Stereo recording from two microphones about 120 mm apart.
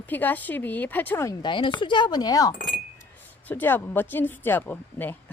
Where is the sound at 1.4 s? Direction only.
40° left (ahead or behind).